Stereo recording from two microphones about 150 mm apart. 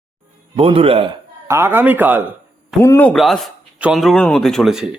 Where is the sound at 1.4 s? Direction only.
15° right (ahead or behind).